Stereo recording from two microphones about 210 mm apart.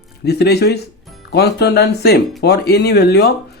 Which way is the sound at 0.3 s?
50° left (ahead or behind).